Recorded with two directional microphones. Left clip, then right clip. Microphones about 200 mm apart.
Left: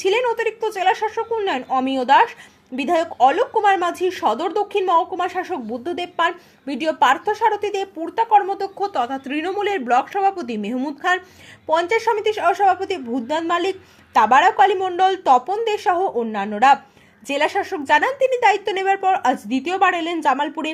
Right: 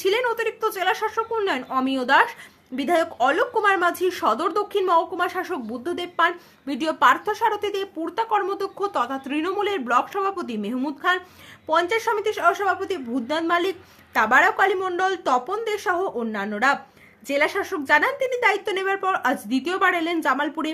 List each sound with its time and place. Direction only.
0.0 s a woman's voice: centre (ahead or behind)